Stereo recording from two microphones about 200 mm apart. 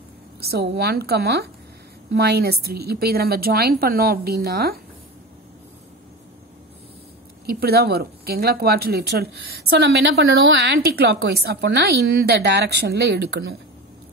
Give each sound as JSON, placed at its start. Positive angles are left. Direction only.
{"t": 0.4, "sound": "speech", "side_deg": -50}
{"t": 7.4, "sound": "speech", "side_deg": -50}